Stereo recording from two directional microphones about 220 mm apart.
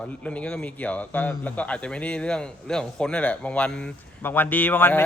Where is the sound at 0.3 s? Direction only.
5° left (ahead or behind).